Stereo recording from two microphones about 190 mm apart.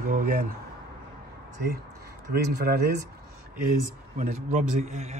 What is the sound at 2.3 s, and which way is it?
Speech, 55° right (ahead or behind).